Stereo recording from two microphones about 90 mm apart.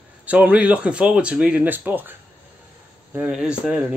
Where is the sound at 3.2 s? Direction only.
10° right (ahead or behind).